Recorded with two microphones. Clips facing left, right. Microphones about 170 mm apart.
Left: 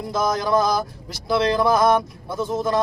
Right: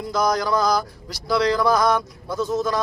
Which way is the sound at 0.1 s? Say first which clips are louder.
Even; 25° left (ahead or behind).